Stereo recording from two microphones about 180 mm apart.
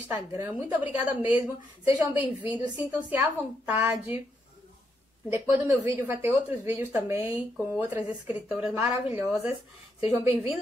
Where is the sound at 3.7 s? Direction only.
10° right (ahead or behind).